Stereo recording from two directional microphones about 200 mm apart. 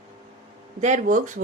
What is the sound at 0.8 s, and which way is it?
Speech, 40° right (ahead or behind).